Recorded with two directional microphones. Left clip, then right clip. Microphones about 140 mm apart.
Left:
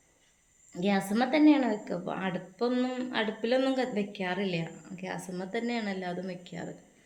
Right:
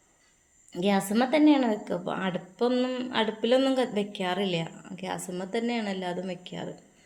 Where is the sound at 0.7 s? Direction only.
35° right (ahead or behind).